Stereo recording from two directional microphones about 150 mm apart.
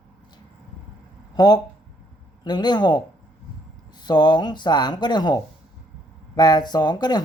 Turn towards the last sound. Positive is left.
turn(degrees=25)  # may be behind; listen again after turning